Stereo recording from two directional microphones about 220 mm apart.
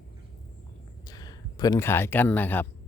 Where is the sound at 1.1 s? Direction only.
15° left (ahead or behind).